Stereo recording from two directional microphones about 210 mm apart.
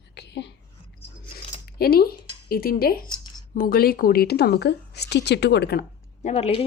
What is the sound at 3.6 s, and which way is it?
A woman's voice, 45° left (ahead or behind).